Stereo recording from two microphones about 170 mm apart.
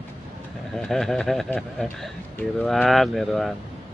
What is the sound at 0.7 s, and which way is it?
Speech, 5° left (ahead or behind).